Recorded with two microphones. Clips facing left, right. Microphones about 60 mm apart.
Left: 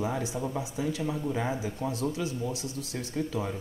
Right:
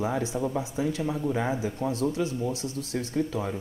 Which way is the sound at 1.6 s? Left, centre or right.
Right.